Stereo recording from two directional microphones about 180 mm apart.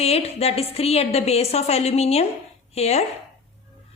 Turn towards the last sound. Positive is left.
turn(degrees=35)  # may be behind; listen again after turning